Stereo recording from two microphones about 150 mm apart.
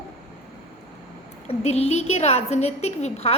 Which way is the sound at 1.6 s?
45° left (ahead or behind).